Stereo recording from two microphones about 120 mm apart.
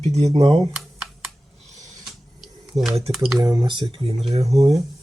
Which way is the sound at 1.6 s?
75° right (ahead or behind).